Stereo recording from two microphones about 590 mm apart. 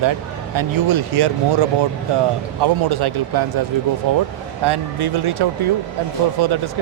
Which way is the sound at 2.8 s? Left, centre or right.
Right.